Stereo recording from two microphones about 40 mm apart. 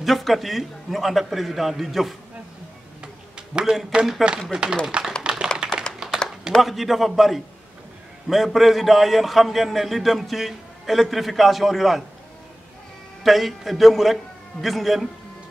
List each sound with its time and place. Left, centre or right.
0.0 s a man's voice: centre
3.0 s a sound: right
4.0 s speech: right
4.4 s speech: centre
5.2 s a sound: right
6.6 s a man's voice: centre
13.2 s a man's voice: centre